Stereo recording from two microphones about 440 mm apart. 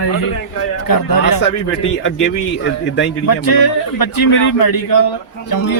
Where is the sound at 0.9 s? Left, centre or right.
Left.